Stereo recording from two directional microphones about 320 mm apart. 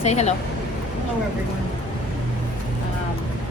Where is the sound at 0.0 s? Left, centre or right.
Left.